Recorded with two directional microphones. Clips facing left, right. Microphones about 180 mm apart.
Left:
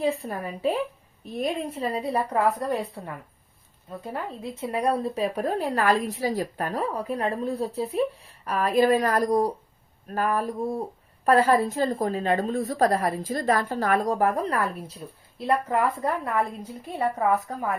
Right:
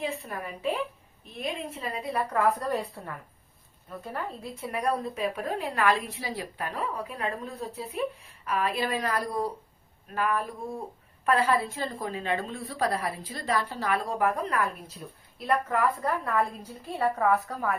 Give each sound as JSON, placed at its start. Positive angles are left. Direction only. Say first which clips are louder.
{"t": 0.0, "sound": "a woman's voice", "louder": "left 7 dB", "side_deg": 35}
{"t": 15.4, "sound": "a woman's voice", "louder": "left 3 dB", "side_deg": 25}